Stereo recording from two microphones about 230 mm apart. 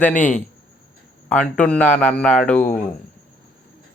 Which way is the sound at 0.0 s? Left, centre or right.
Centre.